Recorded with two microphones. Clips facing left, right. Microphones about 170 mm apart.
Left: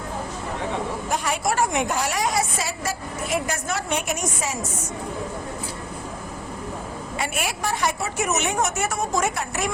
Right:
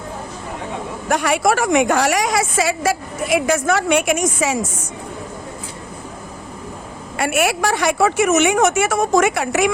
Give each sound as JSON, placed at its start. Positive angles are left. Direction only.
{"t": 1.0, "sound": "a woman's voice", "side_deg": -80}
{"t": 7.2, "sound": "a woman's voice", "side_deg": -70}